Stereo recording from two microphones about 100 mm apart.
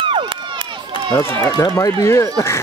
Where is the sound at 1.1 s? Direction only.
25° left (ahead or behind).